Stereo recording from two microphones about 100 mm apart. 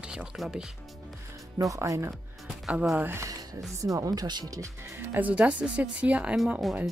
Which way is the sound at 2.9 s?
20° right (ahead or behind).